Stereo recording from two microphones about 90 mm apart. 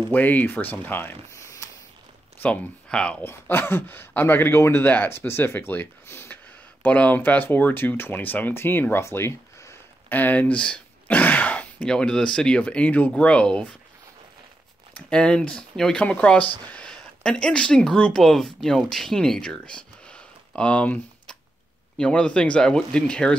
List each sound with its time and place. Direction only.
0.1 s speech: 20° left (ahead or behind)
1.3 s a sound: 35° left (ahead or behind)
2.4 s speech: 15° left (ahead or behind)
3.3 s speech: 25° left (ahead or behind)
15.0 s speech: 10° left (ahead or behind)